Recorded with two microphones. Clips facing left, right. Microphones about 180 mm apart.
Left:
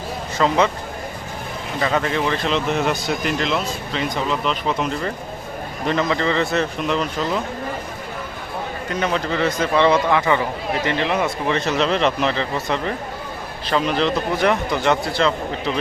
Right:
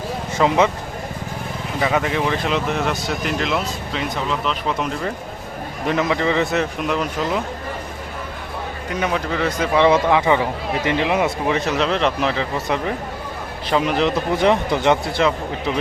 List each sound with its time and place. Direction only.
0.3 s a man's voice: 15° right (ahead or behind)
1.8 s a man's voice: 10° right (ahead or behind)
9.0 s a man's voice: 5° right (ahead or behind)